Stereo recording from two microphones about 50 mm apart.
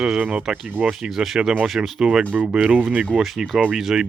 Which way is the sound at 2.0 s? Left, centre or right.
Centre.